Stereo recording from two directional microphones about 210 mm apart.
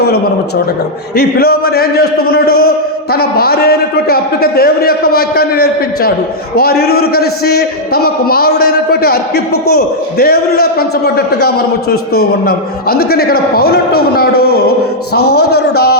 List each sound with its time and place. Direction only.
1.1 s a man's voice: 50° left (ahead or behind)
15.3 s speech: 90° left
15.7 s a man's voice: 50° left (ahead or behind)